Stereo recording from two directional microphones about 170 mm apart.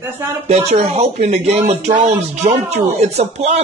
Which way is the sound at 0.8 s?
40° right (ahead or behind).